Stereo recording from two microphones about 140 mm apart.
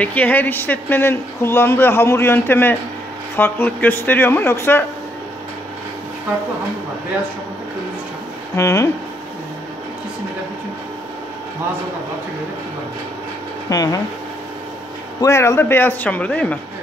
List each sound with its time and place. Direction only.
0.0 s speech: 10° left (ahead or behind)
8.5 s speech: 20° left (ahead or behind)
13.7 s speech: 25° left (ahead or behind)
15.1 s speech: 20° left (ahead or behind)